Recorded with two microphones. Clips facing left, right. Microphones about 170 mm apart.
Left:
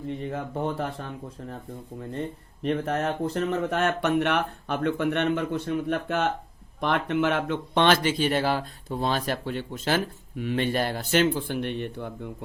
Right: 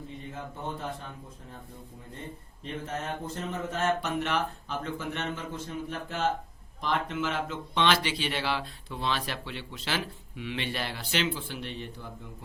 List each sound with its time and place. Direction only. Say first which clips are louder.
0.3 s speech: left 7 dB; 75° left (ahead or behind)
2.6 s speech: left 9 dB; 70° left (ahead or behind)